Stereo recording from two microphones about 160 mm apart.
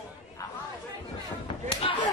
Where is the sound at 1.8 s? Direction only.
35° left (ahead or behind).